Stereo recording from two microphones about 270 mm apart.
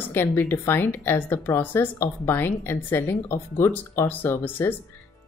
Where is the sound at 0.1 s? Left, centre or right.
Centre.